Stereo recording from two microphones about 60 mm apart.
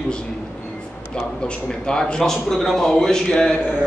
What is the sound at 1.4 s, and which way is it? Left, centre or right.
Speech, centre.